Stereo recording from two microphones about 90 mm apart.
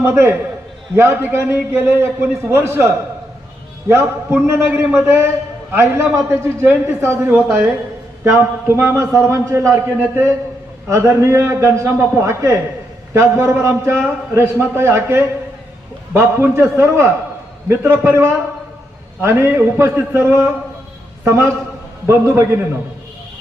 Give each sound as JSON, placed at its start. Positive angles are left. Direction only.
{"t": 0.0, "sound": "a man's voice", "side_deg": -25}